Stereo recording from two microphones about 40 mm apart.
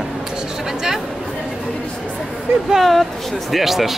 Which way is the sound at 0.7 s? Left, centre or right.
Centre.